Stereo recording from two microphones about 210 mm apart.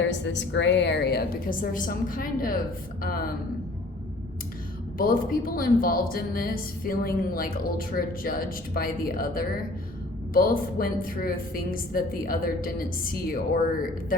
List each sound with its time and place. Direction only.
0.0 s a woman's voice: 60° left (ahead or behind)
4.9 s a woman's voice: 45° left (ahead or behind)